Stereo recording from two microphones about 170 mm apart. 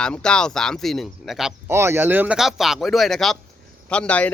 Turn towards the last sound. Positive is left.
turn(degrees=10)  # may be behind; listen again after turning